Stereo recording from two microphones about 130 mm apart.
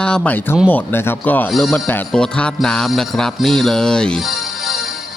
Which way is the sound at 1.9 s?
10° left (ahead or behind).